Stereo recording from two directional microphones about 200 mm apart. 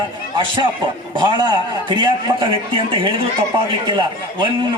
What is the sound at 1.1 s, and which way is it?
A man's voice, 20° right (ahead or behind).